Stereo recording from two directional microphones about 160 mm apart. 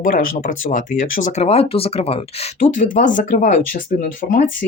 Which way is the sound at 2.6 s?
55° left (ahead or behind).